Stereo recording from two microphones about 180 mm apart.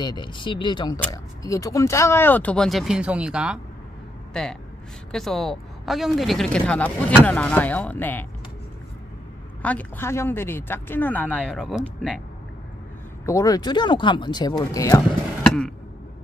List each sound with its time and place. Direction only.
0.0 s a woman's voice: 25° left (ahead or behind); by 8.3 s 10° left (ahead or behind)
9.6 s a woman's voice: 10° left (ahead or behind)
13.2 s speech: 15° left (ahead or behind)